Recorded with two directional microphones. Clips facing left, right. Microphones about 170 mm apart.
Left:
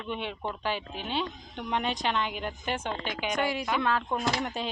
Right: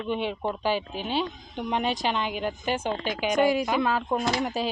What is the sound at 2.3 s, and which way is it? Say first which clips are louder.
Speech: right 5 dB; 30° right (ahead or behind).